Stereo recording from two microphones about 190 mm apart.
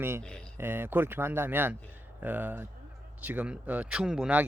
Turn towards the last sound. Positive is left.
turn(degrees=-5)  # may be behind; listen again after turning